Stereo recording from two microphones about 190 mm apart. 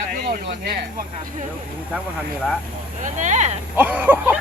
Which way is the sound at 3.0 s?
40° right (ahead or behind).